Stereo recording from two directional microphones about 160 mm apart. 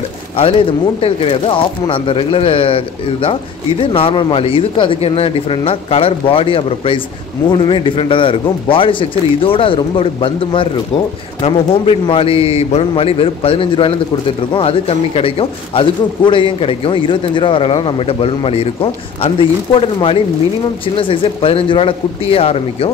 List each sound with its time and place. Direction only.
0.4 s speech: 35° left (ahead or behind)